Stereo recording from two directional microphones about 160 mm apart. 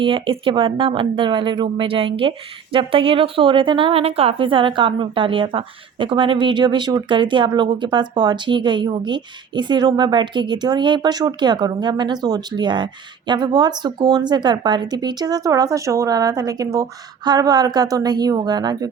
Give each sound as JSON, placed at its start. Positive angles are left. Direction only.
{"t": 0.0, "sound": "a woman's voice", "side_deg": -30}